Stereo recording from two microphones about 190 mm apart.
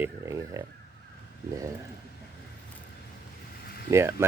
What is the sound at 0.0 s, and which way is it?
Speech, 15° right (ahead or behind).